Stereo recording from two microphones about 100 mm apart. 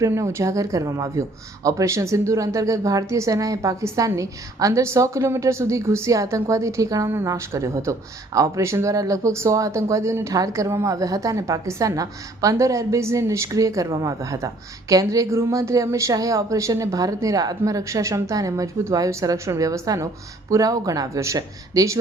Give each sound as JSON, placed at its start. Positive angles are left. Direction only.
{"t": 0.0, "sound": "a woman's voice", "side_deg": -30}